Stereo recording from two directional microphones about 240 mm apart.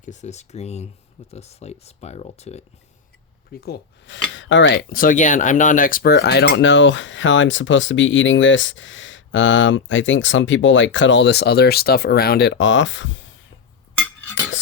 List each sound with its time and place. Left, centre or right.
0.0 s speech: left
3.5 s speech: left